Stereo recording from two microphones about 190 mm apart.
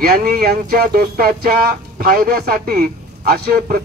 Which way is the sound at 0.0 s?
55° right (ahead or behind).